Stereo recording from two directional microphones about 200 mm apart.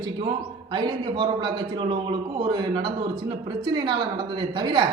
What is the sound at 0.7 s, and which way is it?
A man's voice, 25° right (ahead or behind).